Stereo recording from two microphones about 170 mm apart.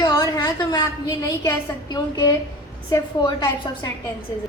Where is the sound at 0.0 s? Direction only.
25° left (ahead or behind).